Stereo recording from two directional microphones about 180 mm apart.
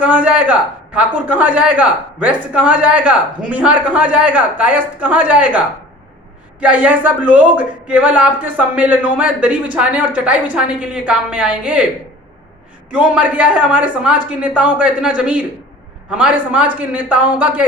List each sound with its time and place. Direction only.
0.0 s speech: 10° right (ahead or behind)
12.9 s speech: 5° right (ahead or behind)